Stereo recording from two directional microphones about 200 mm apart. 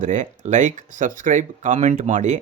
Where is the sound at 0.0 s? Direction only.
40° right (ahead or behind).